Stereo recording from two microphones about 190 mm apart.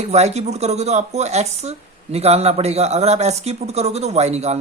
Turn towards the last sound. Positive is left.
turn(degrees=-35)  # may be behind; listen again after turning